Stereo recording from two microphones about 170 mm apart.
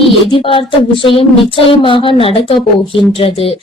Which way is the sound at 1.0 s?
30° left (ahead or behind).